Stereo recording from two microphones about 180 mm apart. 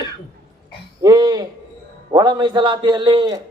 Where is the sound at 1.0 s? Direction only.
20° right (ahead or behind).